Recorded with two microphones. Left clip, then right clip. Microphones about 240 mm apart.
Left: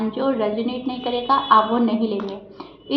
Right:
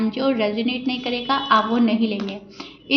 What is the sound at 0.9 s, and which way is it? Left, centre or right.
A woman's voice, right.